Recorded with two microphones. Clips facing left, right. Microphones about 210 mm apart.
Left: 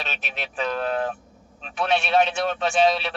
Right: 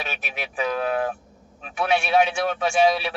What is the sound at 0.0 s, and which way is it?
A man's voice, 10° right (ahead or behind).